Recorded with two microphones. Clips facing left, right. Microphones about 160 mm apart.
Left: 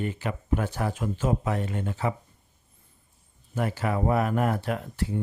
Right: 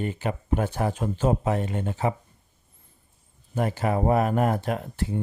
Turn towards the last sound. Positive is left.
turn(degrees=-30)  # may be behind; listen again after turning